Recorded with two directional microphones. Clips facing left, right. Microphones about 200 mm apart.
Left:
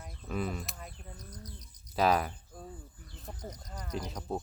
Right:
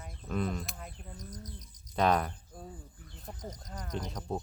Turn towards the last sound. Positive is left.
turn(degrees=5)  # may be behind; listen again after turning